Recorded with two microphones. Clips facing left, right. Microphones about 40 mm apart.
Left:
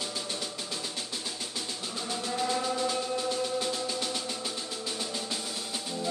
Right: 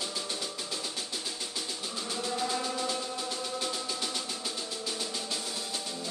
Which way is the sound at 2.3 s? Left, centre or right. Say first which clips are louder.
Left 4 dB; centre.